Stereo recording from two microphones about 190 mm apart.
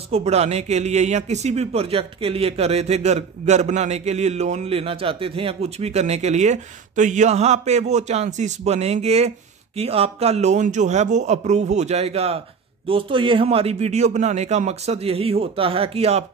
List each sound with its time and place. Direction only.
0.1 s speech: 35° right (ahead or behind)